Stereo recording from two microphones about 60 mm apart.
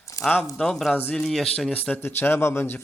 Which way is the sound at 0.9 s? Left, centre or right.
Left.